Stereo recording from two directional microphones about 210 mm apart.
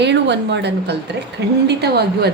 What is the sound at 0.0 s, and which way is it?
A woman's voice, 55° right (ahead or behind).